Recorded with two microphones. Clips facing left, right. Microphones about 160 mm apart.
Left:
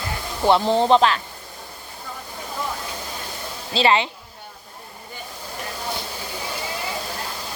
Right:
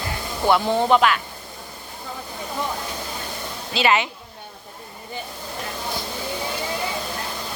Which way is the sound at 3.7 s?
30° left (ahead or behind).